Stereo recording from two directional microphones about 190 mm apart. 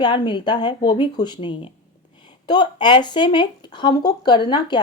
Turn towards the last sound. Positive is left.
turn(degrees=25)  # may be behind; listen again after turning